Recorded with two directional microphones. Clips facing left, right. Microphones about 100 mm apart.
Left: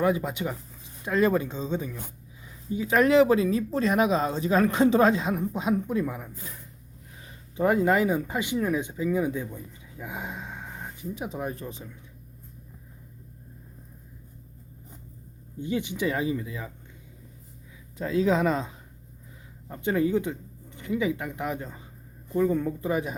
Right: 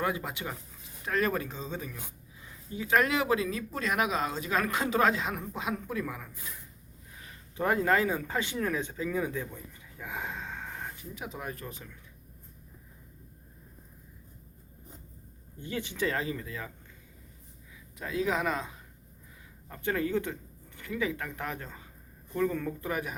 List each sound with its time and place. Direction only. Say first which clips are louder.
0.0 s speech: left 7 dB; 20° left (ahead or behind)
10.0 s gasp: left 2 dB; 15° left (ahead or behind)
11.1 s speech: left 9 dB; 30° left (ahead or behind)
15.5 s speech: left 6 dB; 15° left (ahead or behind)
17.9 s speech: left 7 dB; 30° left (ahead or behind)
19.6 s speech: left 6 dB; 20° left (ahead or behind)